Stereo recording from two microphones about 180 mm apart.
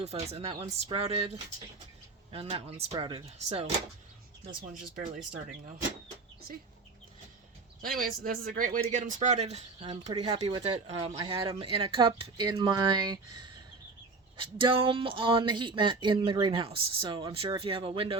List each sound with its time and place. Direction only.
0.0 s speech: 35° right (ahead or behind)
2.3 s speech: 30° right (ahead or behind)
7.8 s speech: 50° right (ahead or behind); by 18.2 s 30° right (ahead or behind)